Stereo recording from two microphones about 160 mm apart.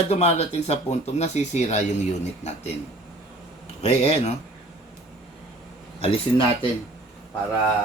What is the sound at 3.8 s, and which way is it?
Speech, 40° left (ahead or behind).